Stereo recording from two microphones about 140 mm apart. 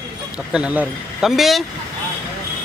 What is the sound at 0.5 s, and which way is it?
Speech, 10° right (ahead or behind).